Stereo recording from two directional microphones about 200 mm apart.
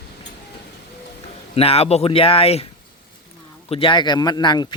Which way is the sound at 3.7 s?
25° left (ahead or behind).